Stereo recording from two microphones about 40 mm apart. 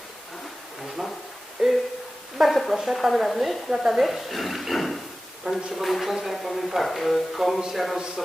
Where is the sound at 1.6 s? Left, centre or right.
Centre.